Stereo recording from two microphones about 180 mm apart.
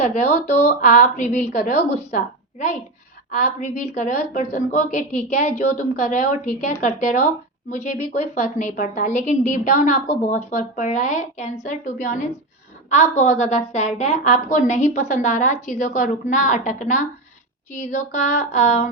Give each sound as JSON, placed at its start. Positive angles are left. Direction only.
{"t": 0.0, "sound": "a woman's voice", "side_deg": 40}